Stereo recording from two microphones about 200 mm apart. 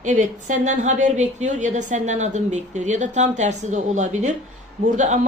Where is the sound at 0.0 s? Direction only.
40° right (ahead or behind).